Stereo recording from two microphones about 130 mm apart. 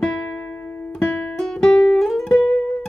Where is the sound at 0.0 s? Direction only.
5° left (ahead or behind).